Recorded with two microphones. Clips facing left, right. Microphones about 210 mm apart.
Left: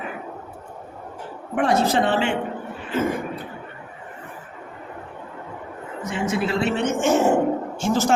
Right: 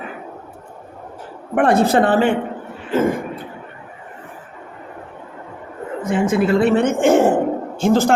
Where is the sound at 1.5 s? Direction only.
55° right (ahead or behind).